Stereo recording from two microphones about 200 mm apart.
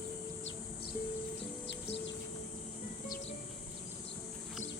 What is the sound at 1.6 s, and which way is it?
Bird, 60° left (ahead or behind).